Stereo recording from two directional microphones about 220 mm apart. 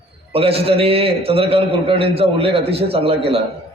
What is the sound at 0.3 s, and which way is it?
A man's voice, 25° right (ahead or behind).